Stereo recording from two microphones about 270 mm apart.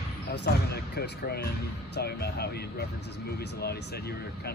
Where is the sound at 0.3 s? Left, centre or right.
Left.